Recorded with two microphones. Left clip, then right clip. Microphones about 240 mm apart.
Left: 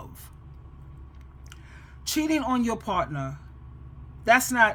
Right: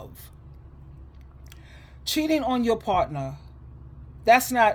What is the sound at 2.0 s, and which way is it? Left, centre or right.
Speech, centre.